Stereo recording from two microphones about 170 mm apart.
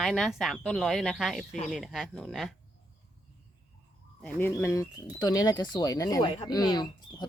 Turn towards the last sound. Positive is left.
turn(degrees=25)  # may be behind; listen again after turning